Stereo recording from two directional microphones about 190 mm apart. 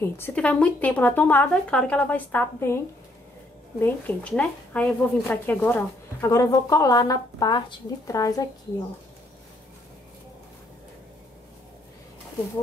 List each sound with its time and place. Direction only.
0.0 s speech: 10° left (ahead or behind)
3.8 s speech: 10° left (ahead or behind)